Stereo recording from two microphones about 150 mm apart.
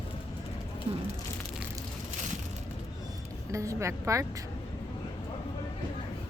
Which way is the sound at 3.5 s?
20° right (ahead or behind).